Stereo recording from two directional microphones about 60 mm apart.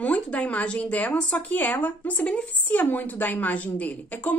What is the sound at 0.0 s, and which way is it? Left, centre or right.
A woman's voice, left.